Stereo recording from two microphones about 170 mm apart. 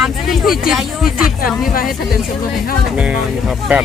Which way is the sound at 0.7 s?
Centre (ahead or behind).